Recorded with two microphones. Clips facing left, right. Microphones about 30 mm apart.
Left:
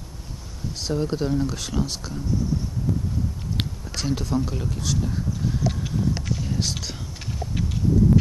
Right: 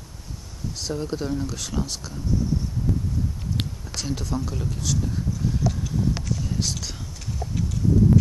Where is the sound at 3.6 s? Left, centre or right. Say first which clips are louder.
Left 4 dB; centre.